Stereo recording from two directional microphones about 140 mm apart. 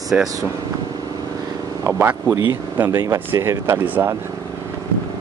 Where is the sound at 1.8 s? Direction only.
15° right (ahead or behind).